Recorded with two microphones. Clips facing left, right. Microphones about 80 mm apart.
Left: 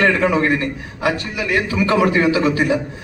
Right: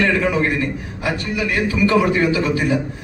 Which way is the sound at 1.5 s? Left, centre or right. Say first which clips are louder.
Even; left.